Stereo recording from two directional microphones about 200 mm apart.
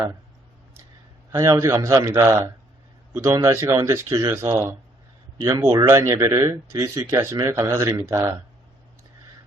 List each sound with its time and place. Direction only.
1.3 s speech: 15° right (ahead or behind)